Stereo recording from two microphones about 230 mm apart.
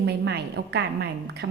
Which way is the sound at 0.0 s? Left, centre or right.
Right.